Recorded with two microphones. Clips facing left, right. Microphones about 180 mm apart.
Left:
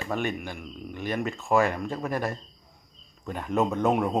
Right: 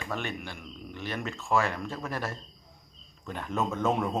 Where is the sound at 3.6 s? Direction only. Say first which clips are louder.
Left 4 dB; 15° left (ahead or behind).